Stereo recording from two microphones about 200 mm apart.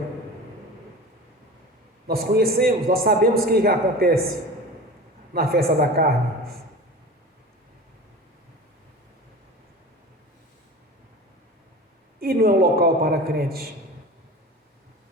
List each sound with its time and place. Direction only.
2.0 s a man's voice: 50° right (ahead or behind)
5.3 s a man's voice: 50° right (ahead or behind)
12.2 s a man's voice: 50° right (ahead or behind)